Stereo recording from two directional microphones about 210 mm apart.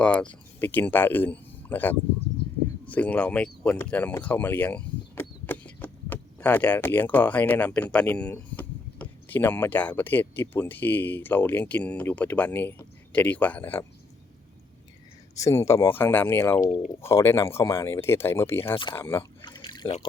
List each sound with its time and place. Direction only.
0.0 s speech: 5° left (ahead or behind)
15.4 s speech: 15° left (ahead or behind)
19.4 s pour: 20° left (ahead or behind)